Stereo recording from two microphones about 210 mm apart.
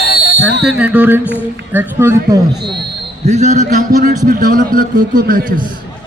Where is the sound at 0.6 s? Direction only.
5° right (ahead or behind).